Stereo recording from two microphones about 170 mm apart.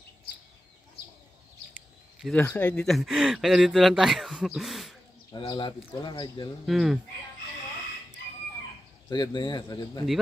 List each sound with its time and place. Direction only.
2.1 s a sound: centre (ahead or behind)
2.4 s speech: 10° left (ahead or behind)
5.3 s speech: 30° left (ahead or behind)
6.6 s speech: centre (ahead or behind)
9.1 s speech: 25° left (ahead or behind)